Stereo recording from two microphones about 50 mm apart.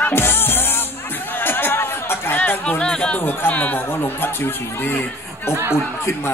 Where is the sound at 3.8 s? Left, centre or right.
Left.